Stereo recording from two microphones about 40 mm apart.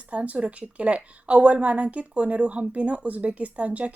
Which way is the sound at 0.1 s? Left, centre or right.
Right.